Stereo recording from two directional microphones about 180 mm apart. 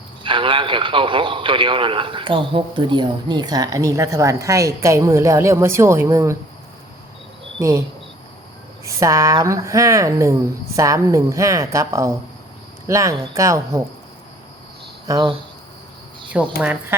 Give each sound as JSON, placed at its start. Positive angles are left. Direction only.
{"t": 0.2, "sound": "a man's voice", "side_deg": -30}
{"t": 7.6, "sound": "speech", "side_deg": -15}
{"t": 15.0, "sound": "a man's voice", "side_deg": -25}
{"t": 16.3, "sound": "speech", "side_deg": -5}